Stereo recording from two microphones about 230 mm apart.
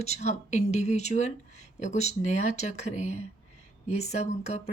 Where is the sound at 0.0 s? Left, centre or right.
Left.